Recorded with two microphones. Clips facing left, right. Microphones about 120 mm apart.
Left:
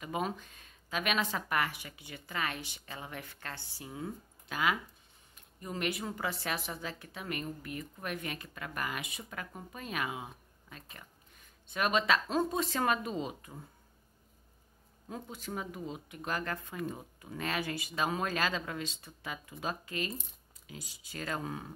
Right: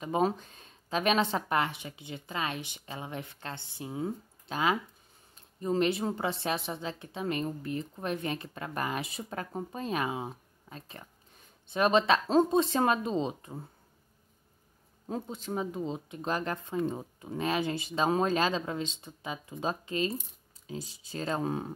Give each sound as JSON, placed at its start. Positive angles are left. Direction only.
{"t": 0.0, "sound": "a woman's voice", "side_deg": -30}
{"t": 15.0, "sound": "a woman's voice", "side_deg": -30}